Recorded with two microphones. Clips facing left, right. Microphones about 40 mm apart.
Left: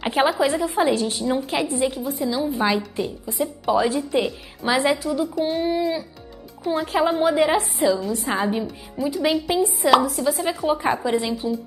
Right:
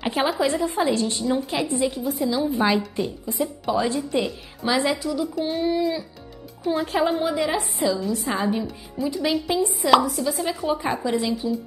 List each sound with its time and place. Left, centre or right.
0.0 s a woman's voice: centre
6.6 s a woman's voice: centre
7.2 s a woman's voice: centre
7.8 s a woman's voice: centre
8.6 s a woman's voice: centre
10.1 s a woman's voice: centre